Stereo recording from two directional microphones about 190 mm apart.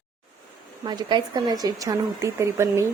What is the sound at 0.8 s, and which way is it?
A woman's voice, 25° right (ahead or behind).